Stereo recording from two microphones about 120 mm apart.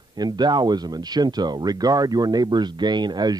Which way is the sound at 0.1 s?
35° right (ahead or behind).